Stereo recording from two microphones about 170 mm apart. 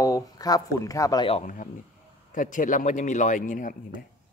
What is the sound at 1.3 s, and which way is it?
A man's voice, 45° left (ahead or behind).